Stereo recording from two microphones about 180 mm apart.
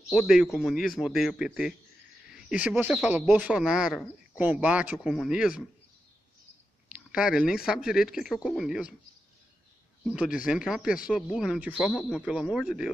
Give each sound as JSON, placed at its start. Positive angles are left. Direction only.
{"t": 0.1, "sound": "speech", "side_deg": 0}
{"t": 6.9, "sound": "speech", "side_deg": -5}
{"t": 10.0, "sound": "speech", "side_deg": -5}